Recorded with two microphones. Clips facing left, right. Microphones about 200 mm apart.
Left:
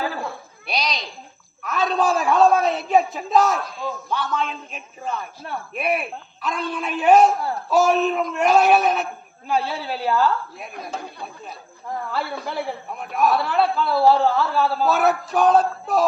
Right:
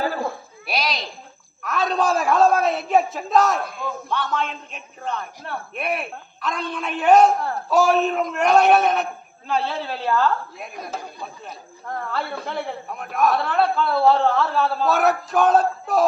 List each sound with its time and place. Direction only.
0.7 s a sound: centre (ahead or behind)
1.6 s a man's voice: centre (ahead or behind)
9.5 s a woman's voice: 15° left (ahead or behind)
10.2 s speech: centre (ahead or behind)